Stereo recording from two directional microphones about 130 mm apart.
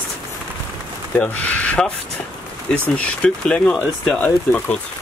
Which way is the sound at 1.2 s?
10° left (ahead or behind).